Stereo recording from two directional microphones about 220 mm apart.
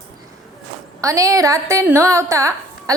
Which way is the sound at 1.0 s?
15° right (ahead or behind).